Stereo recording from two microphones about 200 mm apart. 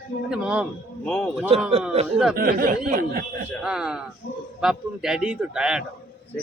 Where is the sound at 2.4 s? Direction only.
45° right (ahead or behind).